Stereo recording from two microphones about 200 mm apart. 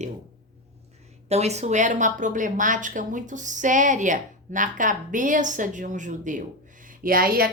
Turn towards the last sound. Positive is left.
turn(degrees=-50)  # may be behind; listen again after turning